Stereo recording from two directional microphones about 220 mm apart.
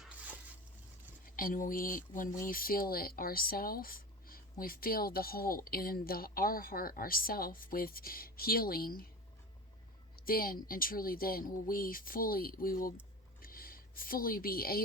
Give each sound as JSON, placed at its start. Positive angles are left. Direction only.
{"t": 1.4, "sound": "speech", "side_deg": 40}
{"t": 10.2, "sound": "speech", "side_deg": 40}
{"t": 13.4, "sound": "a sound", "side_deg": 40}